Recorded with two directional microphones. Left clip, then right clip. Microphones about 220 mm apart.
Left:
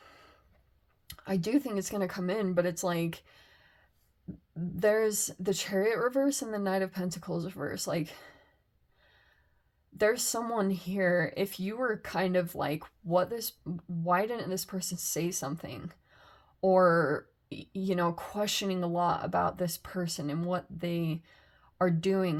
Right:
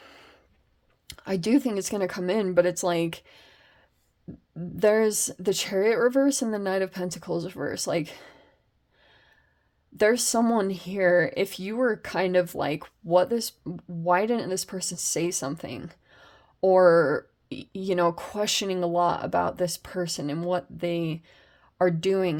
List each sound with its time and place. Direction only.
0.0 s a sound: 50° right (ahead or behind)
1.0 s speech: 45° right (ahead or behind)
4.8 s speech: 40° right (ahead or behind)
10.0 s speech: 40° right (ahead or behind)